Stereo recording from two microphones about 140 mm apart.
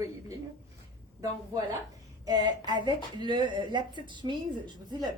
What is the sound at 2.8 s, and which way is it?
Speech, 35° right (ahead or behind).